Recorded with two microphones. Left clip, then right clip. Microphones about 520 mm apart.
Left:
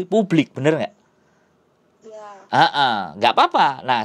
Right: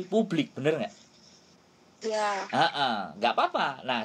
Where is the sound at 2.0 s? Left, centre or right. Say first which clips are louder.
Right 10 dB; right.